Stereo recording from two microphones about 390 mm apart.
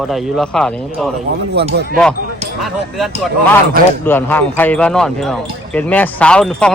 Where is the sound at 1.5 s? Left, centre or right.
Right.